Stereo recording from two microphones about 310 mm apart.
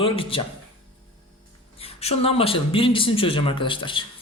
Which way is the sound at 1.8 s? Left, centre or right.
Centre.